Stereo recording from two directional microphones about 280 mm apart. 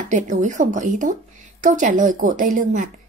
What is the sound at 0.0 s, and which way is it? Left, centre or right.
A woman's voice, right.